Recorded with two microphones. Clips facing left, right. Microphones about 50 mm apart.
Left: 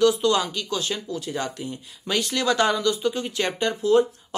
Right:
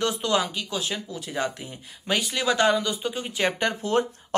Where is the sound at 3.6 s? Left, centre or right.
Right.